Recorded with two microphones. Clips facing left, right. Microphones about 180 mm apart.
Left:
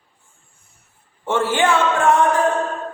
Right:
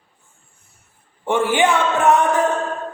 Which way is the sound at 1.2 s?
15° right (ahead or behind).